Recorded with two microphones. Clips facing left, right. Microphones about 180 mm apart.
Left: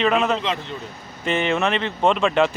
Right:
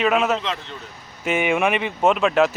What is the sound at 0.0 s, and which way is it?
Speech, 5° right (ahead or behind).